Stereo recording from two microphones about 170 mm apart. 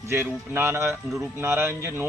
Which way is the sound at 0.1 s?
15° right (ahead or behind).